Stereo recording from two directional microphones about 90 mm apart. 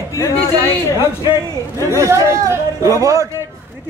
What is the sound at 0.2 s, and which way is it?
Speech, 45° left (ahead or behind).